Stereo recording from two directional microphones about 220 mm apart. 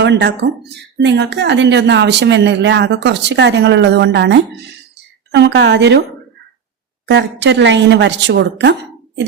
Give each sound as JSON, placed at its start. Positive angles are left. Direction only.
{"t": 0.0, "sound": "a woman's voice", "side_deg": -50}
{"t": 7.1, "sound": "a woman's voice", "side_deg": -50}